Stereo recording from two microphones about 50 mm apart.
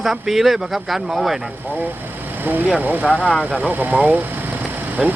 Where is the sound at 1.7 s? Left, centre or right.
Right.